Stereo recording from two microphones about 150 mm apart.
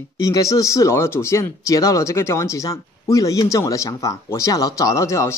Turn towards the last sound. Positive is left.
turn(degrees=20)  # may be behind; listen again after turning